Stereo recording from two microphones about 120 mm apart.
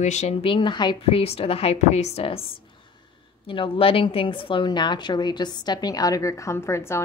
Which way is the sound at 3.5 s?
45° left (ahead or behind).